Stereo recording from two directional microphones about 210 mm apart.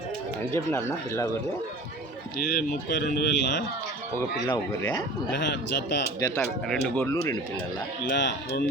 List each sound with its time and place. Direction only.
0.5 s speech: 10° left (ahead or behind)
2.4 s speech: 45° left (ahead or behind)
4.4 s speech: 15° left (ahead or behind)
5.3 s speech: 55° left (ahead or behind)
6.4 s speech: 5° left (ahead or behind)
8.1 s speech: 55° left (ahead or behind)